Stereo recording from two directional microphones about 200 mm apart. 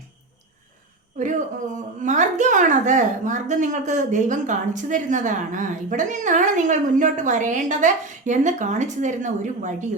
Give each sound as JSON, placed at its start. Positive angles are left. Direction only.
{"t": 2.0, "sound": "a woman's voice", "side_deg": -40}